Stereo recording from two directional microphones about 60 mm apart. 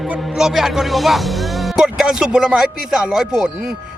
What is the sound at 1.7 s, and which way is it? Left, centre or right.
Speech, centre.